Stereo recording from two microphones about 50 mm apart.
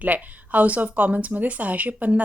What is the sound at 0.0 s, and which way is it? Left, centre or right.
A woman's voice, right.